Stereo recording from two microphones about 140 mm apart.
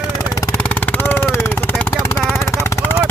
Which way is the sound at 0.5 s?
10° left (ahead or behind).